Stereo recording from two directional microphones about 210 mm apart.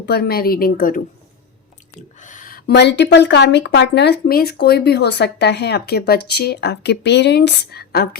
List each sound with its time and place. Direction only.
0.0 s a woman's voice: 50° left (ahead or behind)